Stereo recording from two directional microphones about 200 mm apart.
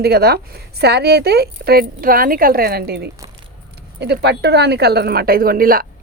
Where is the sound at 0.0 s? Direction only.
55° right (ahead or behind).